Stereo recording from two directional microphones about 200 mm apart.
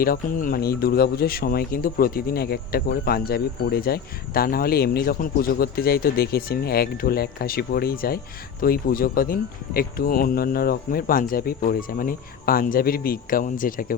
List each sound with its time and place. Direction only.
0.0 s a man's voice: 45° left (ahead or behind)